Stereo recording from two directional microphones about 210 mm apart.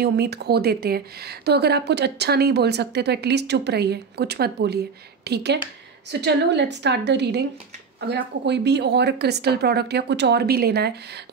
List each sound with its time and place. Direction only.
0.0 s a woman's voice: 50° right (ahead or behind)